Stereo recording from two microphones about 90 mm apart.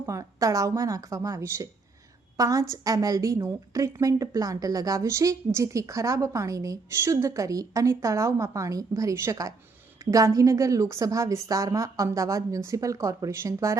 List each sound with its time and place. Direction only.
0.0 s a woman's voice: 35° right (ahead or behind)